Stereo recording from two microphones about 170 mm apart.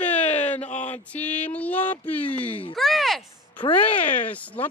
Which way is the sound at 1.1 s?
10° left (ahead or behind).